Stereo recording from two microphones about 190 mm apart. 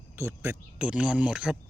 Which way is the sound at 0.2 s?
15° right (ahead or behind).